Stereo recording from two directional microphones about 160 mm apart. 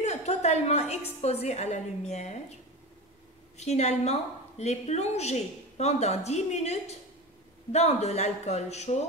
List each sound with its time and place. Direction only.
0.0 s a woman's voice: 45° left (ahead or behind)
3.5 s a woman's voice: 45° left (ahead or behind)